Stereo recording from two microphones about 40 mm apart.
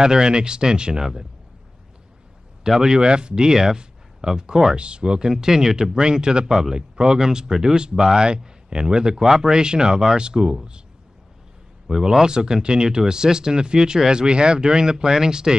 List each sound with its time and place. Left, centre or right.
0.0 s speech: centre
2.6 s speech: centre
11.9 s speech: centre